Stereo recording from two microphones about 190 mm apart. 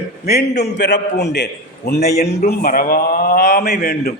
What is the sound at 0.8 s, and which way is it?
A man's voice, 65° left (ahead or behind).